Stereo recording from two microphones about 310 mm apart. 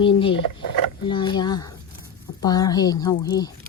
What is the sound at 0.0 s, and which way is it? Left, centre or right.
A woman's voice, centre.